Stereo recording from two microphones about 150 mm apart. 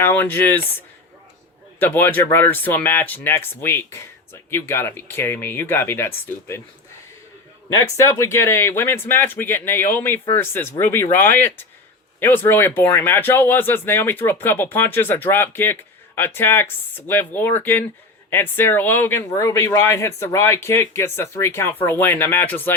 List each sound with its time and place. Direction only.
0.0 s speech: 10° left (ahead or behind)
1.8 s speech: 15° left (ahead or behind)
7.7 s speech: 20° left (ahead or behind)